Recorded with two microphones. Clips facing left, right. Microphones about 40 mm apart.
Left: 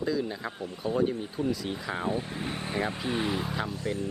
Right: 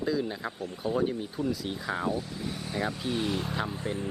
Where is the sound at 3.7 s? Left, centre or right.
Right.